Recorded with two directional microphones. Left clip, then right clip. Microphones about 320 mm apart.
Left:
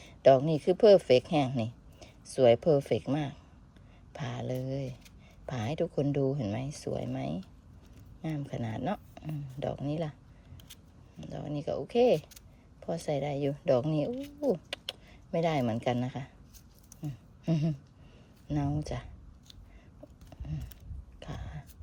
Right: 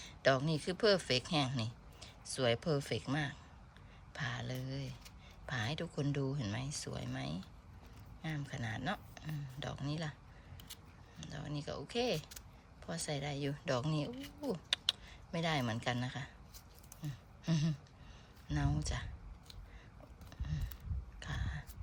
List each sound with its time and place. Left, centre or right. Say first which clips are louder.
0.2 s speech: left 10 dB; centre
11.2 s speech: left 8 dB; centre
17.0 s a sound: left 6 dB; centre
18.4 s speech: left 6 dB; centre
20.3 s a sound: left 3 dB; centre
21.2 s throat clearing: even; centre